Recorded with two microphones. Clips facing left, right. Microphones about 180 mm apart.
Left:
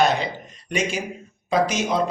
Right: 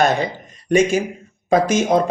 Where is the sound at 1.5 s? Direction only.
50° right (ahead or behind).